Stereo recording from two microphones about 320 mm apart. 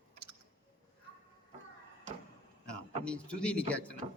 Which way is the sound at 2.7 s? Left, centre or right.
Centre.